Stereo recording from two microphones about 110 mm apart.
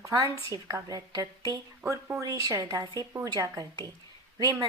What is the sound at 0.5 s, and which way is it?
A woman's voice, 35° right (ahead or behind).